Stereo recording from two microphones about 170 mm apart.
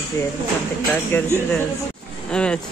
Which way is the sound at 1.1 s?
15° left (ahead or behind).